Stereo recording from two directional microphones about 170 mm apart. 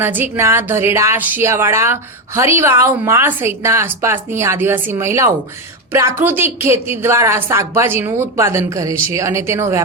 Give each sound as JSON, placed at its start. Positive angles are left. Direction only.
{"t": 0.0, "sound": "speech", "side_deg": -10}